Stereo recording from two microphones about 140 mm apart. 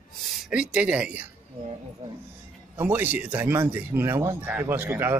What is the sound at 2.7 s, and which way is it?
Speech, 15° right (ahead or behind).